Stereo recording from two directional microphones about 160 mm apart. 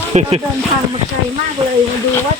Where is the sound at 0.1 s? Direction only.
40° right (ahead or behind).